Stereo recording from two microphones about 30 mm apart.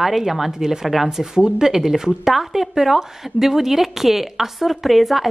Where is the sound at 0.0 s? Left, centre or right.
Centre.